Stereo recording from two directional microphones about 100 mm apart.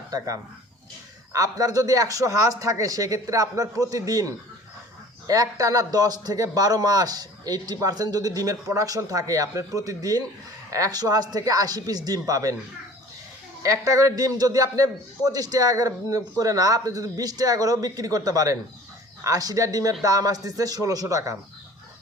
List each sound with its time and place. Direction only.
1.3 s a man's voice: 35° right (ahead or behind)
13.6 s a man's voice: 30° right (ahead or behind)